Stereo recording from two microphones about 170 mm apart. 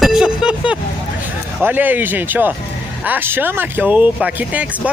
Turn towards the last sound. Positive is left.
turn(degrees=-10)  # may be behind; listen again after turning